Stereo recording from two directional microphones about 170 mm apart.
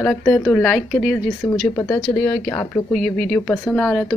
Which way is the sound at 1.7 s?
15° left (ahead or behind).